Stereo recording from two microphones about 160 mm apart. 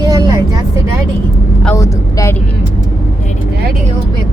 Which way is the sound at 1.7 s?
20° left (ahead or behind).